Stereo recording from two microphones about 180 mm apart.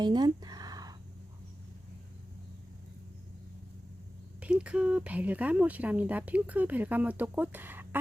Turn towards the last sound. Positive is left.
turn(degrees=-10)  # may be behind; listen again after turning